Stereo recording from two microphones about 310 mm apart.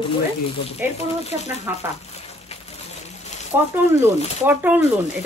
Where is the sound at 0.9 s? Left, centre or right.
Left.